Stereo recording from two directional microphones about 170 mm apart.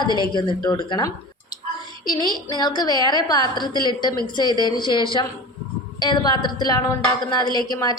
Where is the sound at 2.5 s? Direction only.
25° left (ahead or behind).